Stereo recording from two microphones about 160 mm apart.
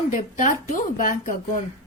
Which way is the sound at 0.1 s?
55° left (ahead or behind).